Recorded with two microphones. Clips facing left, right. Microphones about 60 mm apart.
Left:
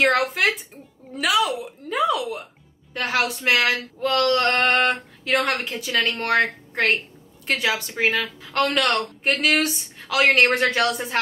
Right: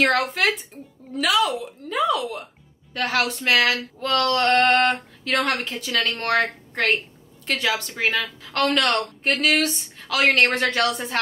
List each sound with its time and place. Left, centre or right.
0.0 s a woman's voice: centre
3.5 s a sound: left
4.0 s a woman's voice: centre